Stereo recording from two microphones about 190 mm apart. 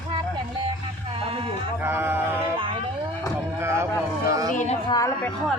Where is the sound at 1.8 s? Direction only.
10° right (ahead or behind).